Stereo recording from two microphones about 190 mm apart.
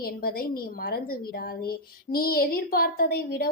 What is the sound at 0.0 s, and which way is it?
A woman's voice, 55° left (ahead or behind).